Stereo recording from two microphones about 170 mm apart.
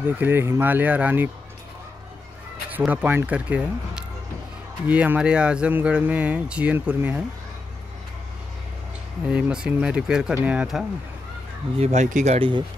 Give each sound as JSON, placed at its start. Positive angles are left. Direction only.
{"t": 0.2, "sound": "speech", "side_deg": -15}
{"t": 2.7, "sound": "speech", "side_deg": -10}
{"t": 9.3, "sound": "speech", "side_deg": -5}
{"t": 11.8, "sound": "speech", "side_deg": -40}
{"t": 12.4, "sound": "speech", "side_deg": -30}